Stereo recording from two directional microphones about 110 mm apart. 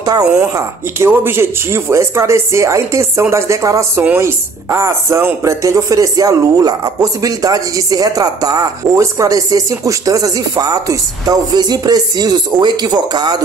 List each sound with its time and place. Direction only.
0.4 s a woman's voice: 25° right (ahead or behind); by 13.4 s 40° right (ahead or behind)